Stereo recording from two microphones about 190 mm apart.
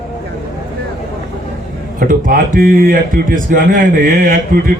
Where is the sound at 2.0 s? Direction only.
45° right (ahead or behind).